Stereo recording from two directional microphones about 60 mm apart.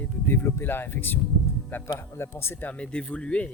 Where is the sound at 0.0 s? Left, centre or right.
Left.